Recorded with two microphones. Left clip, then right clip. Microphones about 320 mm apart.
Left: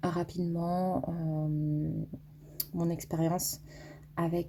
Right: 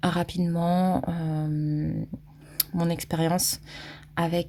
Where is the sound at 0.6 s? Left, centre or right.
Right.